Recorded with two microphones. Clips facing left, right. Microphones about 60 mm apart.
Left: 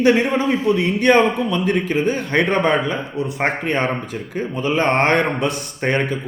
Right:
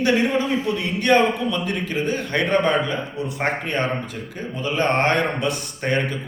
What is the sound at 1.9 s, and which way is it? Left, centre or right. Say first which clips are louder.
Speech: left 4 dB; left.